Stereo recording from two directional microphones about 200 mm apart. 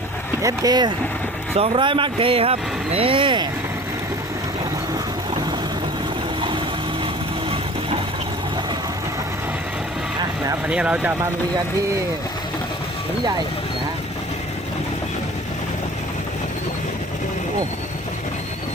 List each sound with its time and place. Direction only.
0.4 s speech: 20° right (ahead or behind)
10.4 s speech: 10° right (ahead or behind)